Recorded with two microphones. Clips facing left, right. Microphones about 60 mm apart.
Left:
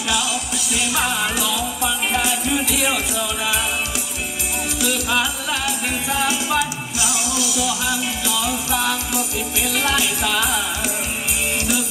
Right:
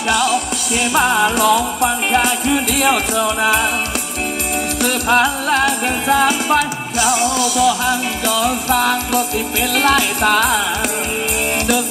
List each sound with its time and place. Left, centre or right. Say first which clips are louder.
0.1 s music: right 8 dB; right
4.8 s music: right 7 dB; right